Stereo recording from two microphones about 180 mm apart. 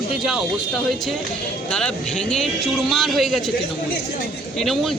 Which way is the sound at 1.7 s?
5° left (ahead or behind).